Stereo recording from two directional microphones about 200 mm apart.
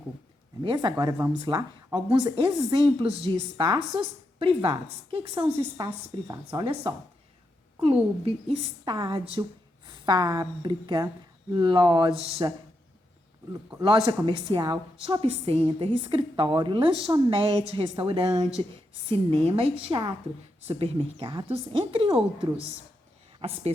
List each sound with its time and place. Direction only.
0.6 s speech: 25° right (ahead or behind)
8.2 s a woman's voice: 30° right (ahead or behind)
13.8 s speech: 20° right (ahead or behind)